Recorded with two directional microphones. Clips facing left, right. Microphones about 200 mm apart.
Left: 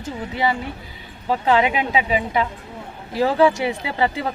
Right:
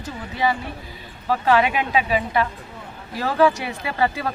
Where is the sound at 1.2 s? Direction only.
20° left (ahead or behind).